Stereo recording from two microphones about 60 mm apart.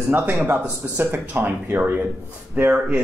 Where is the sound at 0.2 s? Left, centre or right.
Right.